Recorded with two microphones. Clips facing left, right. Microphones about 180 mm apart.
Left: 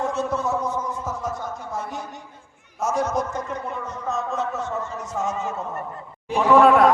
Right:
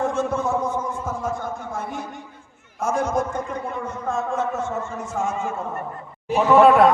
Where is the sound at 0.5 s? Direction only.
25° right (ahead or behind).